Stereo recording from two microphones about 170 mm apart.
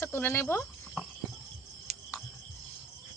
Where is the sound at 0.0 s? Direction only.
10° left (ahead or behind).